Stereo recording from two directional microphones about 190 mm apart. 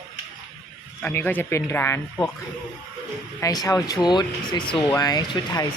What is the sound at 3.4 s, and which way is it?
Speech, 20° left (ahead or behind).